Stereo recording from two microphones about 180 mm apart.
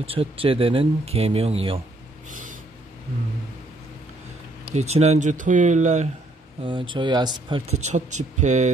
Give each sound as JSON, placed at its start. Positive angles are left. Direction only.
{"t": 0.0, "sound": "speech", "side_deg": -30}
{"t": 4.6, "sound": "speech", "side_deg": -35}
{"t": 6.6, "sound": "speech", "side_deg": -30}